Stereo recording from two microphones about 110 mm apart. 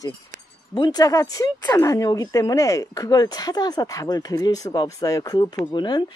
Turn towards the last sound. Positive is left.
turn(degrees=40)  # may be behind; listen again after turning